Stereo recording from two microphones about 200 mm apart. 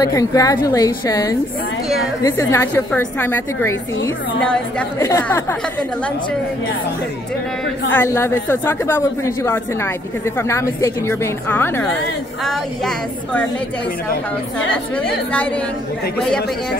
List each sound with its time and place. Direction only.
0.0 s speech: 15° left (ahead or behind)
7.9 s speech: 10° left (ahead or behind)
12.4 s a sound: 5° left (ahead or behind)